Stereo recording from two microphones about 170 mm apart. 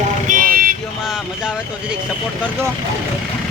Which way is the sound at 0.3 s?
50° right (ahead or behind).